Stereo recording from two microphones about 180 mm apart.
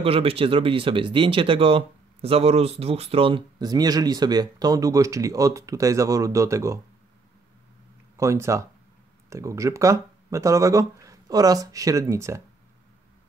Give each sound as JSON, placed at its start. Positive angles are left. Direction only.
{"t": 0.0, "sound": "speech", "side_deg": -30}
{"t": 8.2, "sound": "speech", "side_deg": -15}